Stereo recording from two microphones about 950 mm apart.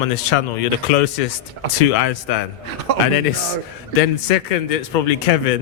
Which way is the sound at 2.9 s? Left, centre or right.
Right.